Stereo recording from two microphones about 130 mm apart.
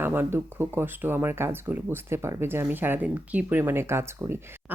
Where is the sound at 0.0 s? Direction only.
15° right (ahead or behind).